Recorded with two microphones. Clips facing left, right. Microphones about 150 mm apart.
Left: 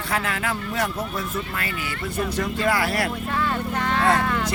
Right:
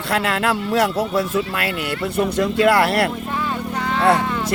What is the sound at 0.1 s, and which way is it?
Speech, 70° right (ahead or behind).